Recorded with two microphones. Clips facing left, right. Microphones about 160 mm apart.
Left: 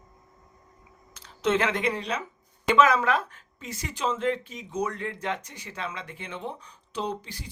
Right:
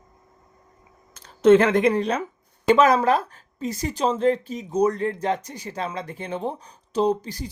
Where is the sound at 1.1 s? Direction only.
50° right (ahead or behind).